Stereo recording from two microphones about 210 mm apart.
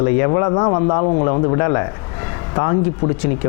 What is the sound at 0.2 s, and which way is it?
A man's voice, 25° left (ahead or behind).